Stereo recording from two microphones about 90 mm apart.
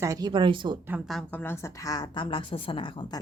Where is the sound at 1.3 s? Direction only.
25° left (ahead or behind).